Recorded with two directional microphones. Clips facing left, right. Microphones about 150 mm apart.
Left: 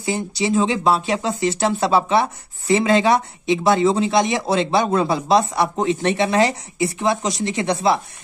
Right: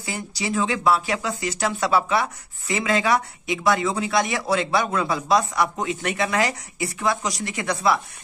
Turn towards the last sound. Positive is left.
turn(degrees=25)  # may be behind; listen again after turning